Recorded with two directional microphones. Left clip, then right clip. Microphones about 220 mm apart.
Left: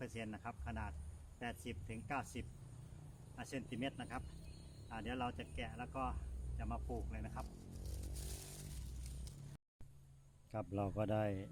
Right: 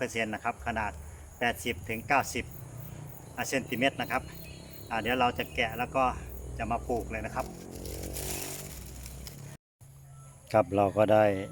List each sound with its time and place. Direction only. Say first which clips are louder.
0.0 s speech: right 17 dB; 10° right (ahead or behind)
10.5 s speech: right 19 dB; centre (ahead or behind)